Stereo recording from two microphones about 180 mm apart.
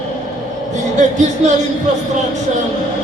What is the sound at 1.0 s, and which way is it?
Speech, 40° right (ahead or behind).